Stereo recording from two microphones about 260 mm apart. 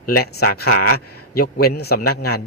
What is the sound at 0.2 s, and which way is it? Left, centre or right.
A man's voice, left.